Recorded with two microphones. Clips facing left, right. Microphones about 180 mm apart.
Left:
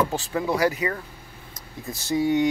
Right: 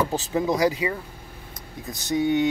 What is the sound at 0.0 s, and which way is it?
Speech, 20° right (ahead or behind).